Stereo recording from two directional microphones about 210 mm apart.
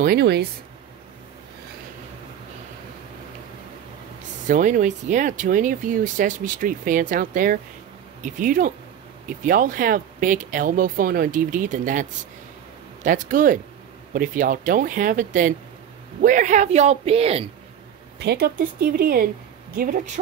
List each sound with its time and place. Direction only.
0.0 s speech: 50° right (ahead or behind)
4.5 s speech: 35° right (ahead or behind)
18.2 s speech: 50° right (ahead or behind)